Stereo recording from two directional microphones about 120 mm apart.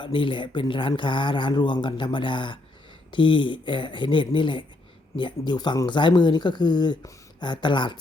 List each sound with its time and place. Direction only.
0.0 s speech: 45° left (ahead or behind)